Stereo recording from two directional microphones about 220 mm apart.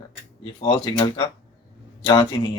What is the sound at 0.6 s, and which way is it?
Speech, 20° left (ahead or behind).